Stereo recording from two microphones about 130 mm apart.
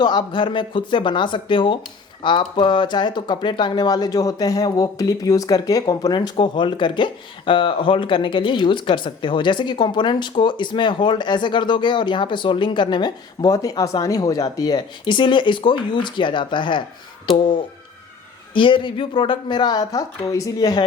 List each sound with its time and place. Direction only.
0.0 s speech: 35° left (ahead or behind)